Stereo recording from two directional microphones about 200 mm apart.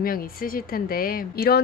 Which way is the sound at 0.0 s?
45° left (ahead or behind).